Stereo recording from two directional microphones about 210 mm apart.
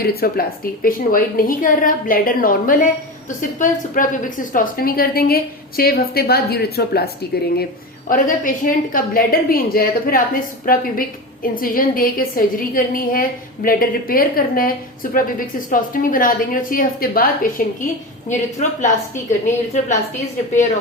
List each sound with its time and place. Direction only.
0.0 s a woman's voice: 45° left (ahead or behind)
18.3 s a woman's voice: 35° left (ahead or behind)